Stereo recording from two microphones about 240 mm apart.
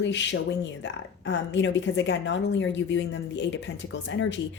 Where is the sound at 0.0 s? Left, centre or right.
Left.